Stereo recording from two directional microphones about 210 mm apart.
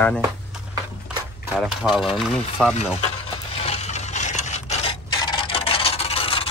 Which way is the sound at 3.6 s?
30° left (ahead or behind).